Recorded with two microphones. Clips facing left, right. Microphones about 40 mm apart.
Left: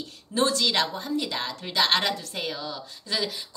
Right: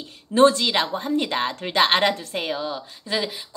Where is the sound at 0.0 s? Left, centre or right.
Right.